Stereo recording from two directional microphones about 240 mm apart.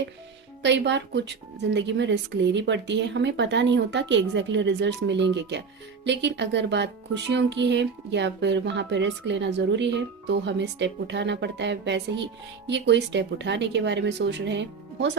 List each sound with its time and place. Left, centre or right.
0.6 s speech: right